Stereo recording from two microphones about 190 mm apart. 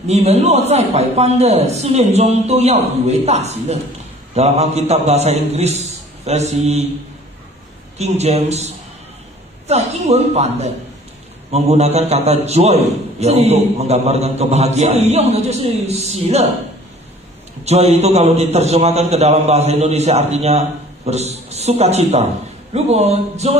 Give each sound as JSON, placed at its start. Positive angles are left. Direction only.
{"t": 0.0, "sound": "a man's voice", "side_deg": -35}
{"t": 8.0, "sound": "a man's voice", "side_deg": -35}
{"t": 17.6, "sound": "a man's voice", "side_deg": -35}